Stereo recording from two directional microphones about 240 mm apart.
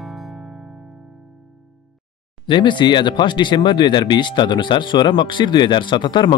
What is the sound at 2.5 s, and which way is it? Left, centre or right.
Speech, centre.